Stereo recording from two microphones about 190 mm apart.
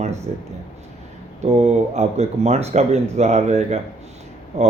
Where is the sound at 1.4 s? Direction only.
35° right (ahead or behind).